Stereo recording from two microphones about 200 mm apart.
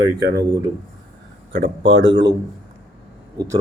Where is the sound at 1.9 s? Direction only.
70° right (ahead or behind).